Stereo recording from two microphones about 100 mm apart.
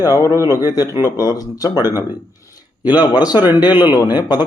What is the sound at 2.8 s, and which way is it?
A man's voice, 45° left (ahead or behind).